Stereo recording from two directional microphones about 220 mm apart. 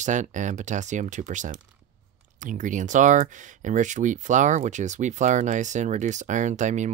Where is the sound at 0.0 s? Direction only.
35° right (ahead or behind).